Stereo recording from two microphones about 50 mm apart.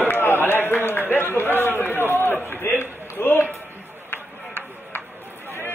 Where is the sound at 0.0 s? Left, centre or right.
Left.